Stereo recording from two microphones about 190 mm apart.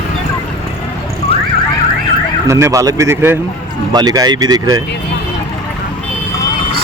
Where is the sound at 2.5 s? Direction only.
15° right (ahead or behind).